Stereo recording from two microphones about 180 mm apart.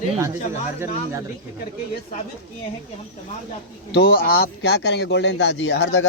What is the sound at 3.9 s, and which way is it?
Speech, 60° left (ahead or behind).